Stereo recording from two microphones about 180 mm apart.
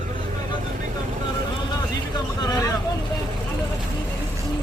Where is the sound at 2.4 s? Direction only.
20° left (ahead or behind).